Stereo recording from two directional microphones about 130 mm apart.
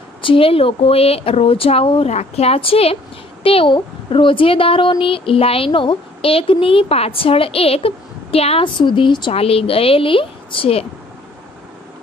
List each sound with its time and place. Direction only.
0.2 s speech: 45° left (ahead or behind)
8.7 s speech: 40° left (ahead or behind)
9.3 s speech: 50° left (ahead or behind)